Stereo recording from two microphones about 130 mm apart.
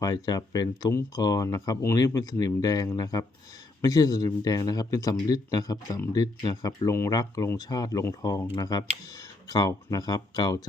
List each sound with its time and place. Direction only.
0.0 s speech: 30° left (ahead or behind)